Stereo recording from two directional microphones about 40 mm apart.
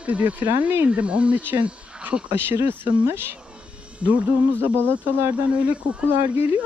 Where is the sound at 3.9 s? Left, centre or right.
Right.